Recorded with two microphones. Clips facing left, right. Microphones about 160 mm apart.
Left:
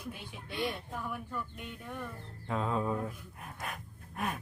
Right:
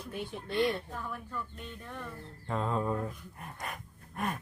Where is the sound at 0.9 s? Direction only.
10° left (ahead or behind).